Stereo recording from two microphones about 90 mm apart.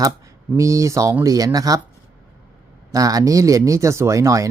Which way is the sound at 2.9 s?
40° right (ahead or behind).